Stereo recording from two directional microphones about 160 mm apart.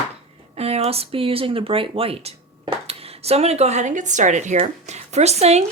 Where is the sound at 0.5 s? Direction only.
40° right (ahead or behind).